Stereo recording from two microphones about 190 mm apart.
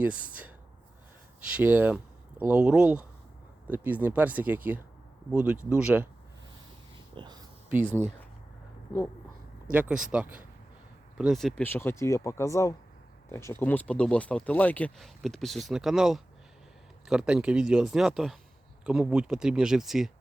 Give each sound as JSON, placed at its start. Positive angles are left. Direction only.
{"t": 0.0, "sound": "speech", "side_deg": -5}
{"t": 1.5, "sound": "speech", "side_deg": -10}
{"t": 7.2, "sound": "speech", "side_deg": -25}
{"t": 9.7, "sound": "speech", "side_deg": -5}